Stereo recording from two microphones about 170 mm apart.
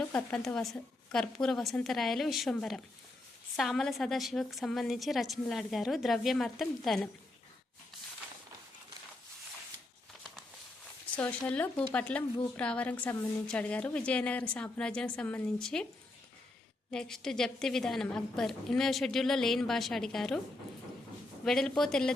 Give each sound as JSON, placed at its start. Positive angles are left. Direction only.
{"t": 0.0, "sound": "a woman's voice", "side_deg": 10}
{"t": 11.0, "sound": "speech", "side_deg": 10}
{"t": 16.9, "sound": "a woman's voice", "side_deg": 5}
{"t": 21.4, "sound": "a woman's voice", "side_deg": 0}